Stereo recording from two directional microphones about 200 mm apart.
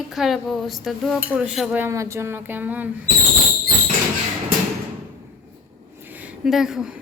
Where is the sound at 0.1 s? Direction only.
Centre (ahead or behind).